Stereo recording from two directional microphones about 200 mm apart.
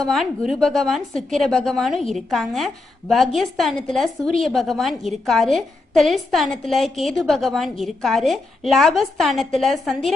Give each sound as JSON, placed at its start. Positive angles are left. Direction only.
{"t": 0.0, "sound": "a woman's voice", "side_deg": 0}